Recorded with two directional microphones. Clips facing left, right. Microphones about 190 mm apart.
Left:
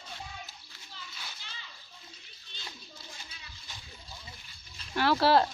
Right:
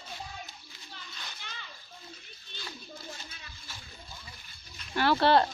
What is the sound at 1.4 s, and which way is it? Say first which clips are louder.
Splash: right 4 dB; 55° right (ahead or behind).